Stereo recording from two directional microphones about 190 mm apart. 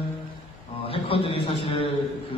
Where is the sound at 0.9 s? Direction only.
30° left (ahead or behind).